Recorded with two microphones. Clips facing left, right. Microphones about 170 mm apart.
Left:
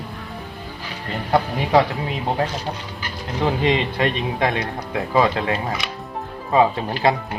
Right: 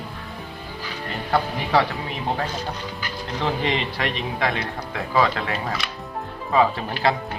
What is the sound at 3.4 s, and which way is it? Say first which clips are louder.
Speech: left 5 dB; 20° left (ahead or behind).